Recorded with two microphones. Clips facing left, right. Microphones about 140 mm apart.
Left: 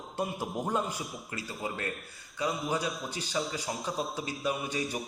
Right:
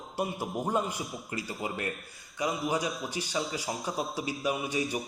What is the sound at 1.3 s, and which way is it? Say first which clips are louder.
A man's voice: right 2 dB; 15° right (ahead or behind).